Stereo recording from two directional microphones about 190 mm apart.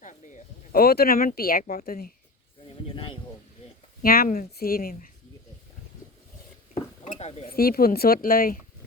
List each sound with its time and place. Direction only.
0.0 s speech: 40° left (ahead or behind)
2.6 s speech: 30° left (ahead or behind)
4.0 s speech: 50° left (ahead or behind)
6.7 s dishes: 35° left (ahead or behind)
7.4 s speech: 50° left (ahead or behind)